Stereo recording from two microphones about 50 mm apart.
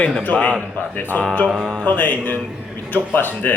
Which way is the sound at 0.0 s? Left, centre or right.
Left.